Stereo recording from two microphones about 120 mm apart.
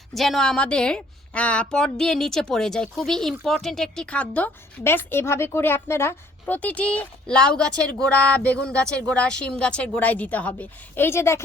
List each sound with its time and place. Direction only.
0.1 s a woman's voice: centre (ahead or behind); by 11.4 s 20° left (ahead or behind)